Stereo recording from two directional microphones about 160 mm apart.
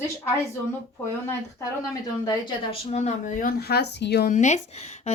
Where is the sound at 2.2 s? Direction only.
35° left (ahead or behind).